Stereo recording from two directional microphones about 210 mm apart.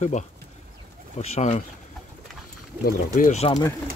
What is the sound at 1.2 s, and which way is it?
Speech, 30° left (ahead or behind).